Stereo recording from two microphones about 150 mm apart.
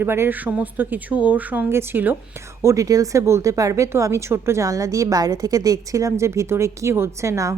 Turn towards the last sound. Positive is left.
turn(degrees=-20)  # may be behind; listen again after turning